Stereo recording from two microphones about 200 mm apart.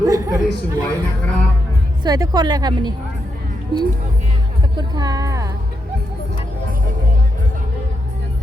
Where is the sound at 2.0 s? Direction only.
20° right (ahead or behind).